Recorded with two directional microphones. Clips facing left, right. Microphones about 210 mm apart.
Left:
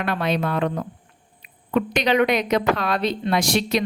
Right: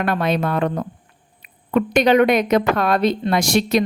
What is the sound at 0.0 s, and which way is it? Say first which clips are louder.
Speech: right 3 dB; 50° right (ahead or behind).